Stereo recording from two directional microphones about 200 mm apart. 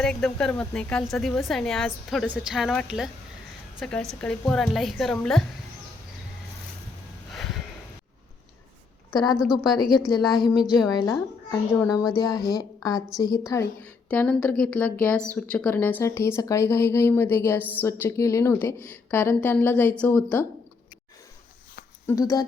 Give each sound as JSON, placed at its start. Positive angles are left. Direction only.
{"t": 0.0, "sound": "speech", "side_deg": 5}
{"t": 7.3, "sound": "a sound", "side_deg": 0}
{"t": 9.1, "sound": "a woman's voice", "side_deg": 20}
{"t": 22.0, "sound": "speech", "side_deg": 15}